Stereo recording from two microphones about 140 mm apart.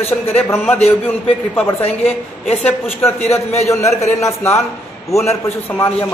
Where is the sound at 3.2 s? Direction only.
50° left (ahead or behind).